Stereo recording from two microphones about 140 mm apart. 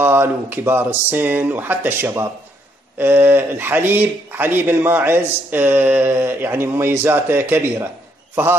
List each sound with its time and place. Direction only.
0.0 s speech: 15° right (ahead or behind)